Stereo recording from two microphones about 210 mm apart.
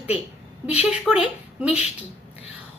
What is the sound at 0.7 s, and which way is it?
A woman's voice, 5° right (ahead or behind).